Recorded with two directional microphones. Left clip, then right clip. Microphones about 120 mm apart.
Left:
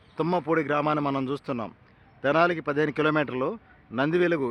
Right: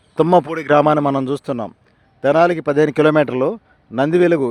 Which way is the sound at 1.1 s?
90° right.